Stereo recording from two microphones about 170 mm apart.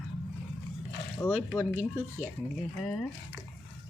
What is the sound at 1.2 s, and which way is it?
Speech, 15° left (ahead or behind).